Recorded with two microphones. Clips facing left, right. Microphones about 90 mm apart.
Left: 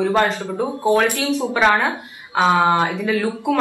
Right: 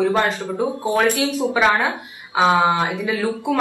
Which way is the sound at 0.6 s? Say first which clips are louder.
Left 2 dB; 15° right (ahead or behind).